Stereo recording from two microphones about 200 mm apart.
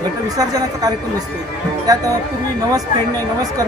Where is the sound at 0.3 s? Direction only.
20° right (ahead or behind).